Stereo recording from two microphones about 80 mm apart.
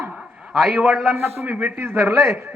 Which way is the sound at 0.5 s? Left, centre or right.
Centre.